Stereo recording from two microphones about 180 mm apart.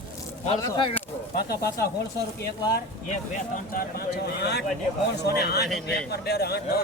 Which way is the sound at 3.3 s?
55° left (ahead or behind).